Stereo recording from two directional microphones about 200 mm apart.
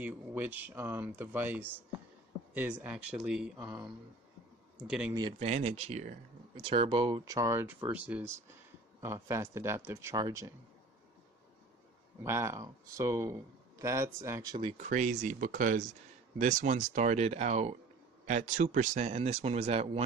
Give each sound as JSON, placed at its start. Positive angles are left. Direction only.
{"t": 0.0, "sound": "speech", "side_deg": -10}
{"t": 5.4, "sound": "speech", "side_deg": -30}
{"t": 12.2, "sound": "speech", "side_deg": -15}
{"t": 14.6, "sound": "speech", "side_deg": -30}